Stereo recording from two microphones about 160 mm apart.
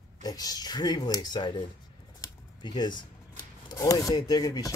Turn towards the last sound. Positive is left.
turn(degrees=25)  # may be behind; listen again after turning